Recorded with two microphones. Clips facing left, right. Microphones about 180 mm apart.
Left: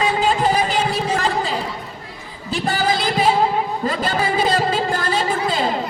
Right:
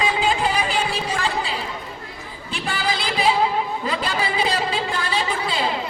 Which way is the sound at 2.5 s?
40° left (ahead or behind).